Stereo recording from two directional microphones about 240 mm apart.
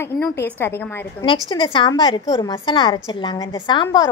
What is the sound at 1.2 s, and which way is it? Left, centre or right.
A woman's voice, left.